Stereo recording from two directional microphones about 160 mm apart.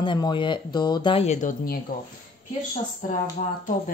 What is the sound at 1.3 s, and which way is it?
Speech, 60° left (ahead or behind).